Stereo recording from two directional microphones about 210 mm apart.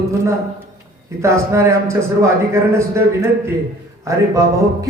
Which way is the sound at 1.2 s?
15° right (ahead or behind).